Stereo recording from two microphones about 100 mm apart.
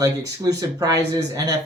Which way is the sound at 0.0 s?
35° right (ahead or behind).